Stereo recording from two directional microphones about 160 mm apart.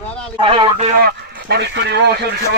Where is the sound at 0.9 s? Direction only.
65° right (ahead or behind); by 2.2 s 90° right.